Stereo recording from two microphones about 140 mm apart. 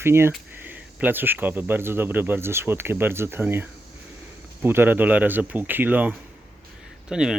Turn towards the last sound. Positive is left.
turn(degrees=-5)  # may be behind; listen again after turning